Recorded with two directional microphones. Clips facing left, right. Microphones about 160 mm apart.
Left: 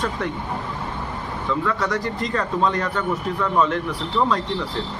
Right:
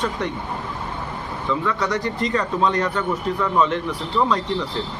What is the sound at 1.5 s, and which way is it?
Speech, centre (ahead or behind).